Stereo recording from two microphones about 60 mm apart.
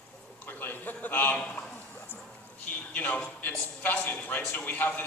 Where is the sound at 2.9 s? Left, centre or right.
Left.